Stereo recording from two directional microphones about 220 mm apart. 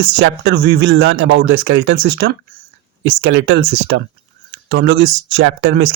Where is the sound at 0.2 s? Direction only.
50° right (ahead or behind).